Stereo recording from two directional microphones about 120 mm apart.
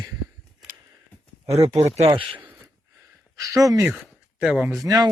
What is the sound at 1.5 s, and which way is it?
Speech, 60° right (ahead or behind).